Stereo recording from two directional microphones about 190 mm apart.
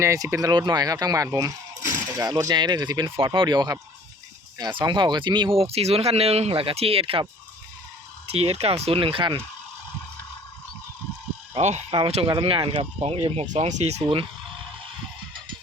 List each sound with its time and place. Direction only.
0.0 s speech: 15° right (ahead or behind)
8.3 s speech: 35° right (ahead or behind)
11.5 s speech: 35° right (ahead or behind)